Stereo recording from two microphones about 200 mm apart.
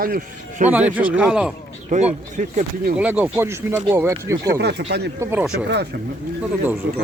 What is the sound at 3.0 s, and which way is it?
Speech, 10° right (ahead or behind).